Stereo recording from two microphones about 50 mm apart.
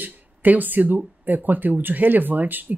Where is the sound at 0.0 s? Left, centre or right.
Right.